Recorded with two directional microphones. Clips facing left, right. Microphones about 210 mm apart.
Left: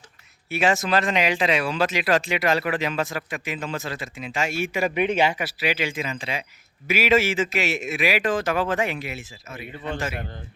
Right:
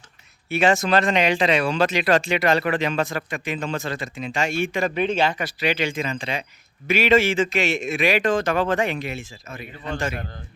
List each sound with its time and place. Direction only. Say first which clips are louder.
0.5 s speech: right 3 dB; centre (ahead or behind)